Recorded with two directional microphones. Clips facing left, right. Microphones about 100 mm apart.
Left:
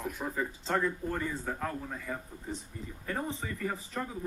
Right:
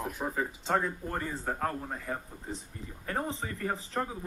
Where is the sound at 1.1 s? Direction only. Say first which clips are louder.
Right 1 dB; 35° right (ahead or behind).